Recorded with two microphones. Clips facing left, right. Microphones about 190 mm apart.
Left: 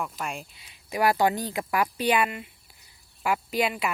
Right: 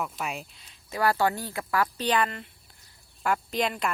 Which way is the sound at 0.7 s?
15° left (ahead or behind).